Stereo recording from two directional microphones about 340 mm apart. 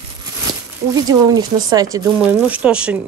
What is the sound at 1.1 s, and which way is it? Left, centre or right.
Speech, centre.